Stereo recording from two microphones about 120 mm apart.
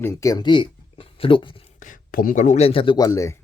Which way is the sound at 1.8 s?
90° left.